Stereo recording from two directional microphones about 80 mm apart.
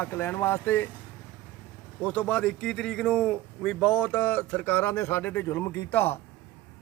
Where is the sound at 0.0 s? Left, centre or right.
Left.